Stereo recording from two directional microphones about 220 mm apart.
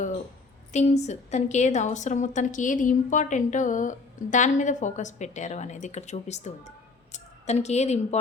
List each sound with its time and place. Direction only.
0.7 s a woman's voice: 30° left (ahead or behind)